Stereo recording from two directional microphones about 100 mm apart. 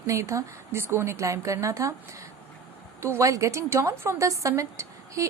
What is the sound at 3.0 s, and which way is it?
Speech, 30° right (ahead or behind).